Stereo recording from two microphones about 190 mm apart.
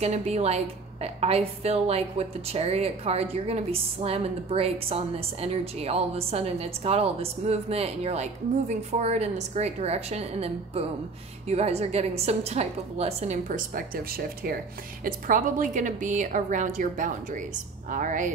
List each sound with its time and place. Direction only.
0.0 s a woman's voice: 35° right (ahead or behind)